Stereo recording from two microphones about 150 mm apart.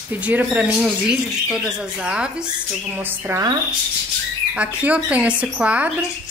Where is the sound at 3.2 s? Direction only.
20° right (ahead or behind).